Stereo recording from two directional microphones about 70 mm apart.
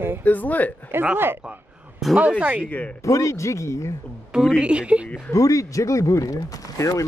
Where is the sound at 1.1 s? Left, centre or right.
Right.